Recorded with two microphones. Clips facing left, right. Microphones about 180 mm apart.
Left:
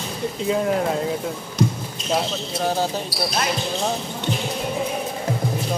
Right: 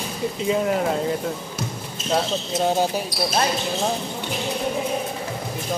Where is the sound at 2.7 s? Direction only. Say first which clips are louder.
Right 1 dB; 15° right (ahead or behind).